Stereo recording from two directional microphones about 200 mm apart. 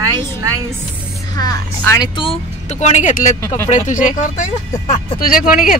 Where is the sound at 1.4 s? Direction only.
20° left (ahead or behind); by 4.1 s 40° left (ahead or behind).